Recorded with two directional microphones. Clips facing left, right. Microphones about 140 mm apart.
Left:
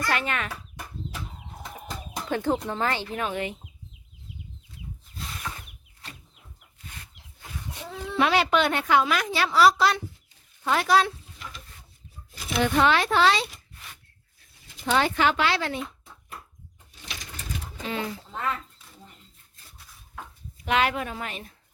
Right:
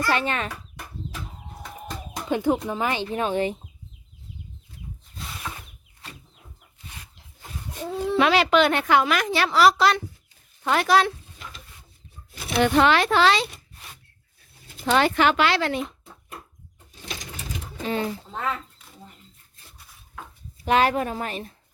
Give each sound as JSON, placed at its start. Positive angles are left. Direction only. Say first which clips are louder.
{"t": 0.1, "sound": "speech", "louder": "right 4 dB", "side_deg": -30}
{"t": 2.3, "sound": "speech", "louder": "right 3 dB", "side_deg": -10}
{"t": 8.2, "sound": "a woman's voice", "louder": "right 3 dB", "side_deg": -90}
{"t": 10.6, "sound": "a woman's voice", "louder": "right 2 dB", "side_deg": -65}
{"t": 12.3, "sound": "speech", "louder": "right 4 dB", "side_deg": -65}
{"t": 14.9, "sound": "a woman's voice", "louder": "right 3 dB", "side_deg": -70}
{"t": 17.8, "sound": "a woman's voice", "louder": "right 5 dB", "side_deg": -35}
{"t": 18.3, "sound": "speech", "louder": "right 1 dB", "side_deg": -20}
{"t": 20.7, "sound": "a woman's voice", "louder": "right 4 dB", "side_deg": -40}